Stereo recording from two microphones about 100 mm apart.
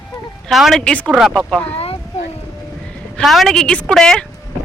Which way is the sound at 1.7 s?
80° left.